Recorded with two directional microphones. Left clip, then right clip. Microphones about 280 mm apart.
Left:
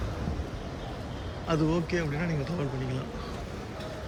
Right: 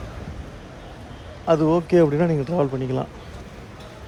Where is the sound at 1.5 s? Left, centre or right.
Centre.